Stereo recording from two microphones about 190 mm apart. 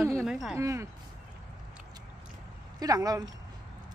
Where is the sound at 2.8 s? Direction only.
20° right (ahead or behind).